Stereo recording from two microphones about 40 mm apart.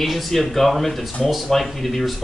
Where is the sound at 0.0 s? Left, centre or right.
Centre.